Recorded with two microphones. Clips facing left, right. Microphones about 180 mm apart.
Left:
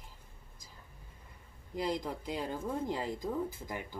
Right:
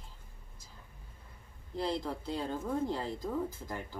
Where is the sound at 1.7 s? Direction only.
15° left (ahead or behind).